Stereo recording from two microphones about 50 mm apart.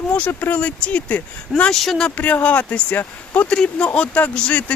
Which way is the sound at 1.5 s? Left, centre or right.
Centre.